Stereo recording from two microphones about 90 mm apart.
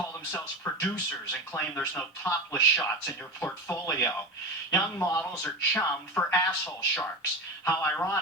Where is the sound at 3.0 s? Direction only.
5° left (ahead or behind).